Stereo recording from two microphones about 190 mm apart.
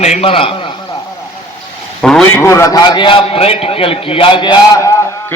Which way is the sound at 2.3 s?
15° left (ahead or behind).